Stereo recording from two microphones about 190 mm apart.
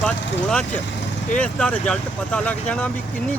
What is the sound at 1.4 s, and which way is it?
Speech, 5° left (ahead or behind).